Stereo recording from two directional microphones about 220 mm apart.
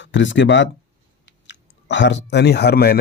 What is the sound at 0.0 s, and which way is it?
Speech, 60° left (ahead or behind).